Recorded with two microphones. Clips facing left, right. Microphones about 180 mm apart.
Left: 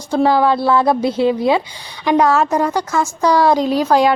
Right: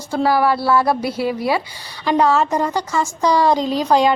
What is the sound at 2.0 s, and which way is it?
A woman's voice, 10° left (ahead or behind).